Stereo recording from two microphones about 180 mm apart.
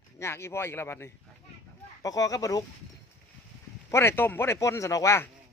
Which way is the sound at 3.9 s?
15° left (ahead or behind).